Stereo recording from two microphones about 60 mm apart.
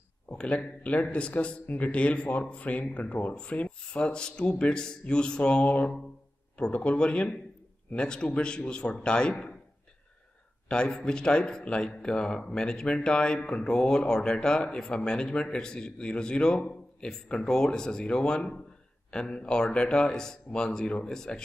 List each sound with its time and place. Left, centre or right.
0.3 s a man's voice: centre
10.7 s a man's voice: centre